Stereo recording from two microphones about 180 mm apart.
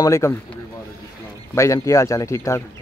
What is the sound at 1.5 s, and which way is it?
Speech, 15° left (ahead or behind).